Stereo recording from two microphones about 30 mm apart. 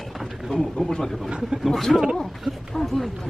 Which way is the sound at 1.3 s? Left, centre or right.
Right.